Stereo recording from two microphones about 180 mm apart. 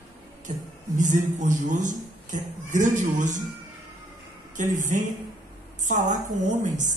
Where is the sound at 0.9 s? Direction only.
45° right (ahead or behind).